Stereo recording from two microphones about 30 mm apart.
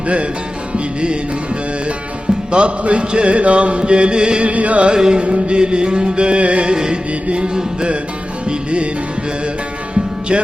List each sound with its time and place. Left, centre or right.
2.5 s chant: right
4.4 s music: right
4.9 s music: right
5.2 s chant: right
6.7 s music: right
7.3 s chant: right
8.4 s music: right
9.9 s music: right